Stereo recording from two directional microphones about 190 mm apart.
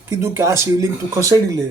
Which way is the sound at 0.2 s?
15° right (ahead or behind).